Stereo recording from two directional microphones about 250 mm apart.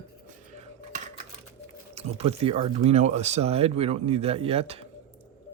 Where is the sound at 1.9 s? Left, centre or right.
Right.